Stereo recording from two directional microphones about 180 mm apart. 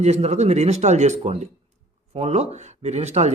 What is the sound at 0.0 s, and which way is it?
Speech, 35° right (ahead or behind).